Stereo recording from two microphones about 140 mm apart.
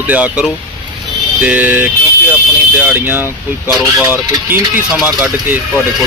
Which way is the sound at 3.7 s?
Centre (ahead or behind).